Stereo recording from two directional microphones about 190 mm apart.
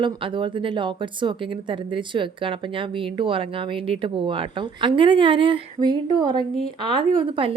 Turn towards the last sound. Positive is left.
turn(degrees=-30)  # may be behind; listen again after turning